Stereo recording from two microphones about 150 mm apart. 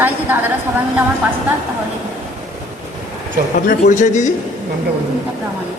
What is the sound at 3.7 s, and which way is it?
Speech, 60° left (ahead or behind).